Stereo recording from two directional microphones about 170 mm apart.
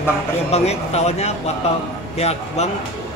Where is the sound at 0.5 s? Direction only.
40° left (ahead or behind).